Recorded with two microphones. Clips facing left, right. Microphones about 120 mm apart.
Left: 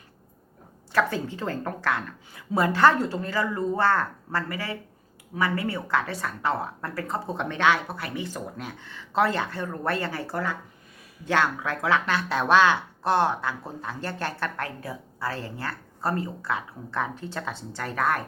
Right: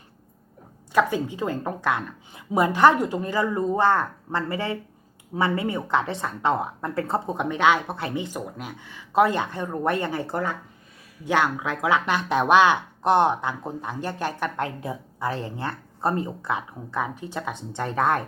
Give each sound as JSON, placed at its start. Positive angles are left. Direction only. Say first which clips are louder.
{"t": 0.9, "sound": "speech", "louder": "right 3 dB", "side_deg": -15}